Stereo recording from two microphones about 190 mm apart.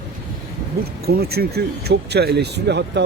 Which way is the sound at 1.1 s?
55° right (ahead or behind).